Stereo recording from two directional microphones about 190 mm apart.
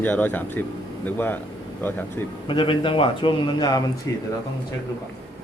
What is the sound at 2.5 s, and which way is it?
A man's voice, 25° left (ahead or behind).